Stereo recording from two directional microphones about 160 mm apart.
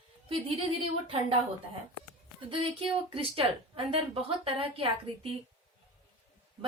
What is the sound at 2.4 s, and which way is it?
Speech, 35° right (ahead or behind).